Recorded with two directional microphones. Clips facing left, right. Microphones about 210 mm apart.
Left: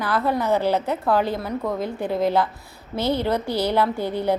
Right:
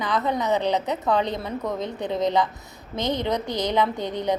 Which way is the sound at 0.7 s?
20° right (ahead or behind).